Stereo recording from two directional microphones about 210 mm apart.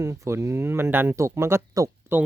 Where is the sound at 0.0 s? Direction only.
15° right (ahead or behind).